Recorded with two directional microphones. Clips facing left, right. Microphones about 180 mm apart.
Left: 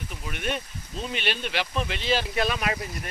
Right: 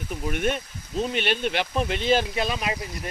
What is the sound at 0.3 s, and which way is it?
Speech, 50° right (ahead or behind).